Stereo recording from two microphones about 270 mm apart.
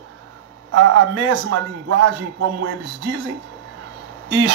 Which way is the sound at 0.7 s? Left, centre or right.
Right.